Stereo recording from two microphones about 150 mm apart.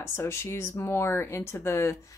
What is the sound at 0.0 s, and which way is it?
Speech, 15° left (ahead or behind).